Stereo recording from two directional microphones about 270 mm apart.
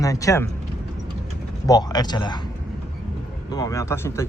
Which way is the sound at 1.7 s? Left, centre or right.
Centre.